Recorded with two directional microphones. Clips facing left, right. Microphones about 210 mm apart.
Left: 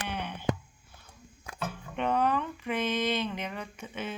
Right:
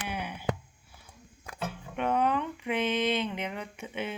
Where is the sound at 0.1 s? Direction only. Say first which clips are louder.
Even; 10° right (ahead or behind).